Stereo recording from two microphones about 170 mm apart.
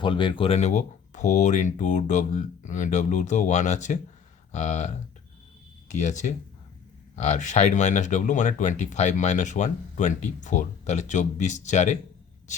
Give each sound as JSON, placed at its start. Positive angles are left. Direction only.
{"t": 0.0, "sound": "speech", "side_deg": 30}